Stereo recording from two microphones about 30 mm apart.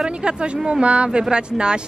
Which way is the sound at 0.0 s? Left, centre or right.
Right.